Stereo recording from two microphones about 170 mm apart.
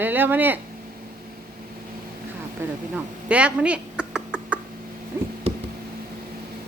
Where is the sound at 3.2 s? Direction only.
5° right (ahead or behind).